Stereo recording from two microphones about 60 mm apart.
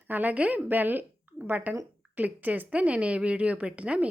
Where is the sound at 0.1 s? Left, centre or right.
Right.